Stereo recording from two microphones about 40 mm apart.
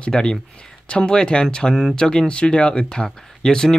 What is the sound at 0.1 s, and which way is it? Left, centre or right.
Speech, left.